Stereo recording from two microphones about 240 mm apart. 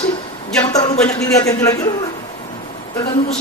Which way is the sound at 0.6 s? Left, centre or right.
Centre.